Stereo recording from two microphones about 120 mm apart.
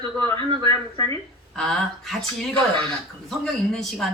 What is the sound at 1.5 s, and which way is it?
A woman's voice, 5° left (ahead or behind).